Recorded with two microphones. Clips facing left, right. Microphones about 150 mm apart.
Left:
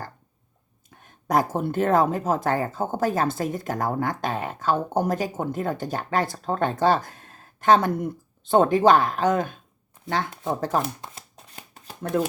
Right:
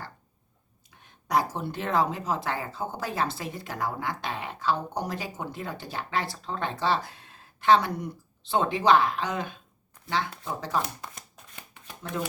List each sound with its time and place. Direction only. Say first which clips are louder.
0.9 s speech: left 4 dB; 45° left (ahead or behind)
11.0 s shuffling cards: left 2 dB; 35° left (ahead or behind)